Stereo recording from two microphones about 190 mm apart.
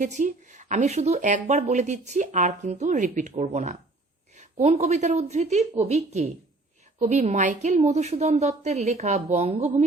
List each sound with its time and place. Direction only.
0.0 s speech: 40° right (ahead or behind)
7.0 s speech: 35° right (ahead or behind)